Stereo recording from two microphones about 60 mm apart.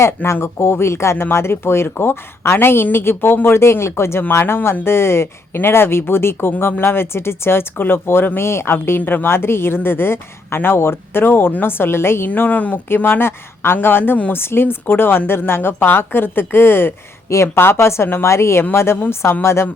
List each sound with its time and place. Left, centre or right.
0.3 s speech: left
9.0 s speech: left
12.5 s speech: left
12.9 s speech: left
17.2 s speech: left
17.5 s speech: left